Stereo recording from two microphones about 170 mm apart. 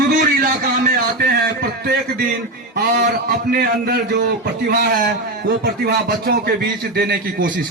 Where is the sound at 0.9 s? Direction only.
65° right (ahead or behind).